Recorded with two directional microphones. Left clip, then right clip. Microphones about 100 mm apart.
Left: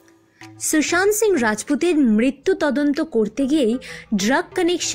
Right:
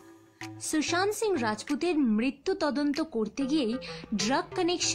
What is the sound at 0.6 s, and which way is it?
Speech, 40° left (ahead or behind).